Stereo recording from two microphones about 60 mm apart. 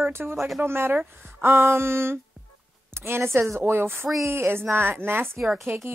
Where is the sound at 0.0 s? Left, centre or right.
Right.